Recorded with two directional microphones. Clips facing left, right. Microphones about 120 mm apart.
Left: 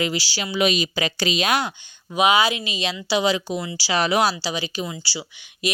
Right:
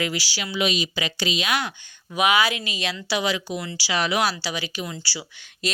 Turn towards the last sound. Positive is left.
turn(degrees=20)  # may be behind; listen again after turning